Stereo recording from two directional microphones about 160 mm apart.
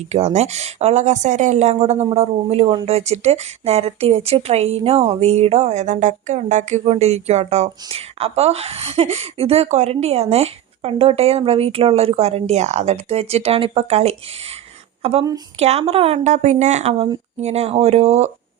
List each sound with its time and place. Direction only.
0.1 s speech: 40° right (ahead or behind)